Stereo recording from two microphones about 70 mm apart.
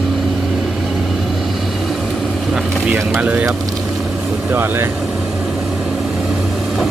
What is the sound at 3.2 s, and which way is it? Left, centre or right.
Speech, right.